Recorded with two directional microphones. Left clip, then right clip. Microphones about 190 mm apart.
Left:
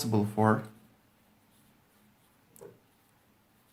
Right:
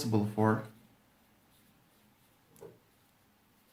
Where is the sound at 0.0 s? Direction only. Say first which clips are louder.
Left 3 dB; 40° left (ahead or behind).